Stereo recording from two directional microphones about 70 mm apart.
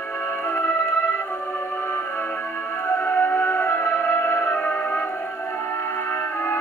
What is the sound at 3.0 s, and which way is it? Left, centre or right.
Music, left.